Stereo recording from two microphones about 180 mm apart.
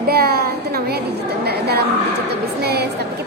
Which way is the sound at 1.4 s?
60° right (ahead or behind).